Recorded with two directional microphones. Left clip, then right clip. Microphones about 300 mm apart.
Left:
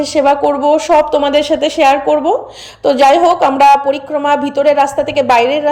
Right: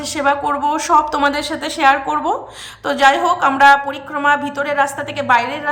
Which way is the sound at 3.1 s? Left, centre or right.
Centre.